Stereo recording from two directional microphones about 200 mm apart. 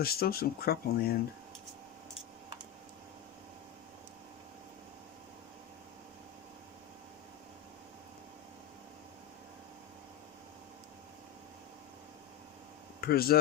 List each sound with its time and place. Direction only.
0.0 s speech: 50° left (ahead or behind)
13.0 s speech: 50° left (ahead or behind)